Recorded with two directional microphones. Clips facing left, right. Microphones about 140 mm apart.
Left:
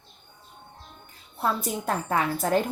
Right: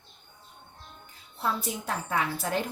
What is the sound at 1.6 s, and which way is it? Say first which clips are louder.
A woman's voice: left 5 dB; 45° left (ahead or behind).